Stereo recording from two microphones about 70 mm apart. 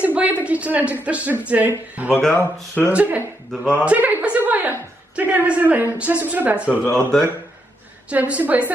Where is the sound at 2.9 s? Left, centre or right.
Right.